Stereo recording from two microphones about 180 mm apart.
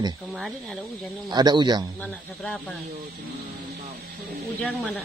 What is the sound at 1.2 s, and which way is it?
Speech, 25° right (ahead or behind).